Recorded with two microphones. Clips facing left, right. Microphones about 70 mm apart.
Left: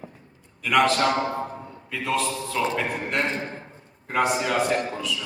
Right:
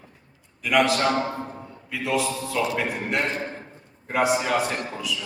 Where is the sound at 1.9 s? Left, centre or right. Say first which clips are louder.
Right 1 dB; centre.